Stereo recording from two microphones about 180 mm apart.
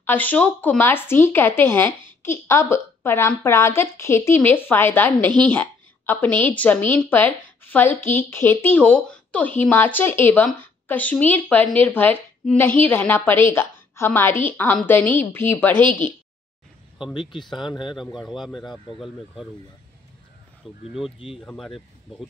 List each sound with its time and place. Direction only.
0.0 s a woman's voice: 10° left (ahead or behind)
17.1 s speech: 25° left (ahead or behind)
18.3 s speech: centre (ahead or behind)
20.6 s speech: centre (ahead or behind)